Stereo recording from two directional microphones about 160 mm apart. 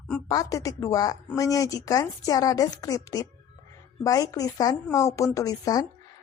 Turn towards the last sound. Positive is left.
turn(degrees=25)  # may be behind; listen again after turning